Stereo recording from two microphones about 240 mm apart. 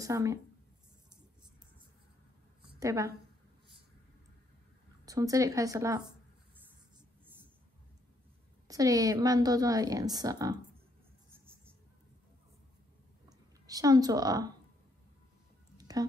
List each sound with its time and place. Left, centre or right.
0.0 s speech: centre
2.8 s a woman's voice: centre
5.0 s a woman's voice: centre
8.6 s a woman's voice: centre
13.7 s a woman's voice: centre
15.8 s a sound: centre